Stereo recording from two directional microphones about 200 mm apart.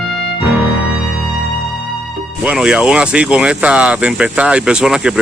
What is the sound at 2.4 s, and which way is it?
Speech, 5° right (ahead or behind).